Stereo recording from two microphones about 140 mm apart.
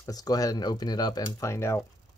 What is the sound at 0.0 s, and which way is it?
Speech, 25° left (ahead or behind).